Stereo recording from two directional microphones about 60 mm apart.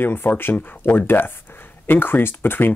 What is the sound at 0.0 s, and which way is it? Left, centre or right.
Speech, left.